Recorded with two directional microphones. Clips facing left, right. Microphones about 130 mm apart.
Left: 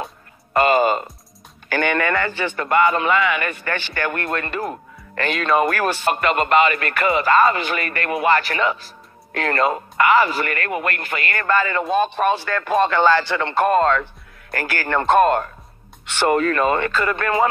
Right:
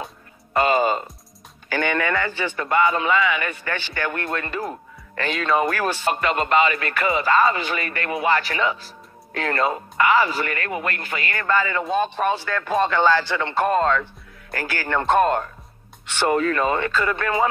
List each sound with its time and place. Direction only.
0.5 s music: 55° left (ahead or behind)
1.7 s speech: 60° left (ahead or behind)